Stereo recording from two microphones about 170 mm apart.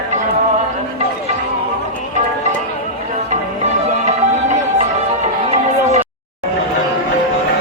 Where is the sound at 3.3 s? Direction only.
40° right (ahead or behind).